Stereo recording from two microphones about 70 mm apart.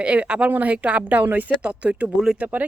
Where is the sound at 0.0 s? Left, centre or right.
Centre.